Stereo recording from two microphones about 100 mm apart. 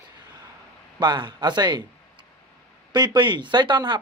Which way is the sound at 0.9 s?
50° right (ahead or behind).